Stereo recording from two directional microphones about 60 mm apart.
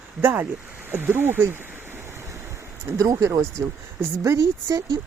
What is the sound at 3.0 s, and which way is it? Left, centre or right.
Speech, right.